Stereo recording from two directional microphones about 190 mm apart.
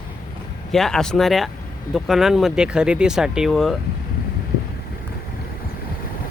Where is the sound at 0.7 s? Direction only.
Centre (ahead or behind).